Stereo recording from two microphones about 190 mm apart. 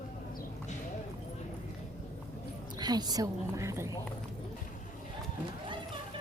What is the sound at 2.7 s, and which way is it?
A woman's voice, 20° right (ahead or behind).